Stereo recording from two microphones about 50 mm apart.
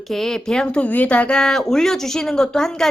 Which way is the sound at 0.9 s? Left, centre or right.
Left.